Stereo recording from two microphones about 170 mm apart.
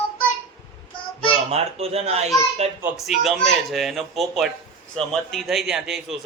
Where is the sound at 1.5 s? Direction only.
35° right (ahead or behind).